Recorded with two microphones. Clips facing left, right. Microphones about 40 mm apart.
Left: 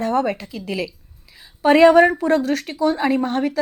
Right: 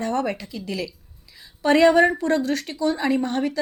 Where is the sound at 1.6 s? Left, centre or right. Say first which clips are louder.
Left 4 dB; centre.